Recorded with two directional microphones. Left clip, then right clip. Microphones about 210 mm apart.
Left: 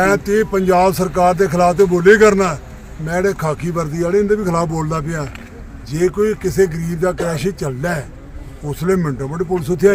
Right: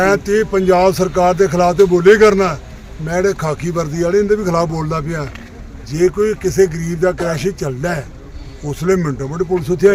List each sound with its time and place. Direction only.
0.0 s speech: centre (ahead or behind)